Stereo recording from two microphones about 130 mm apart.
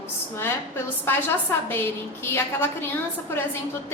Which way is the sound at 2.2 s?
20° left (ahead or behind).